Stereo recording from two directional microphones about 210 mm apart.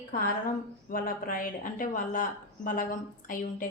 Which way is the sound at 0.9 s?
40° left (ahead or behind).